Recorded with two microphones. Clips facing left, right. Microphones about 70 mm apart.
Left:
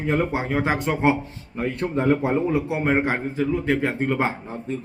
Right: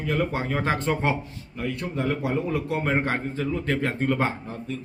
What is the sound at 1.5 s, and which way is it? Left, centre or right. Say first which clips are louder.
A man's voice: left 5 dB; left.